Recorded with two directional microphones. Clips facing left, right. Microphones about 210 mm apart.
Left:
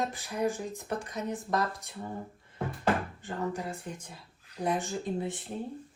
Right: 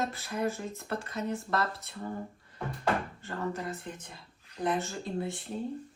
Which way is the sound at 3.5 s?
5° left (ahead or behind).